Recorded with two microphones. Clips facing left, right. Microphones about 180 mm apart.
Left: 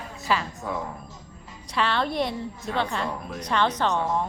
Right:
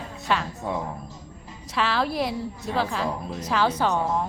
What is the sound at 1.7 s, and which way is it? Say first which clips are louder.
A woman's voice: even; centre (ahead or behind).